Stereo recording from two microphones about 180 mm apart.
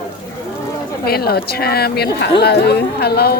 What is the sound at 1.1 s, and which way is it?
A woman's voice, 60° left (ahead or behind).